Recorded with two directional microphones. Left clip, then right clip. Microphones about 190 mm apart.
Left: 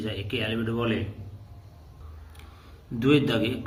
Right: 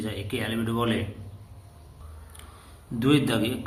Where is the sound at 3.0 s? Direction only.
10° left (ahead or behind).